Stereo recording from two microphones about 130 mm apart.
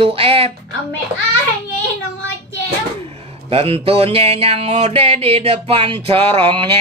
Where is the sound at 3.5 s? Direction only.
50° right (ahead or behind).